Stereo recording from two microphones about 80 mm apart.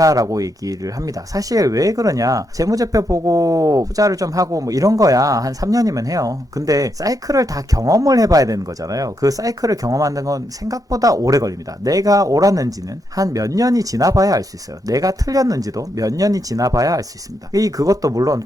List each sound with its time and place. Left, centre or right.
0.0 s speech: right